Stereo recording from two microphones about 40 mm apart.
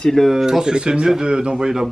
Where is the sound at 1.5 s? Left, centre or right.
Centre.